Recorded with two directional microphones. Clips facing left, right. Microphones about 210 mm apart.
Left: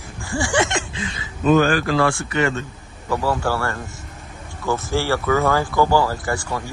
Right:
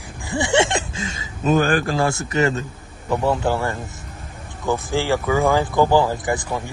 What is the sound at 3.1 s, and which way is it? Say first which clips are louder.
Speech: right 2 dB; 20° right (ahead or behind).